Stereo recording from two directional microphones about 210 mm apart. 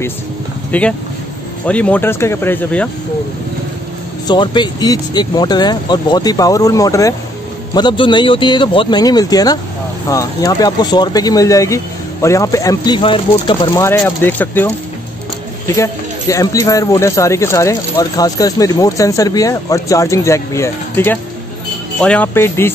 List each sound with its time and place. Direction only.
0.7 s speech: 5° left (ahead or behind)
4.3 s speech: 20° left (ahead or behind)
15.7 s speech: 15° left (ahead or behind)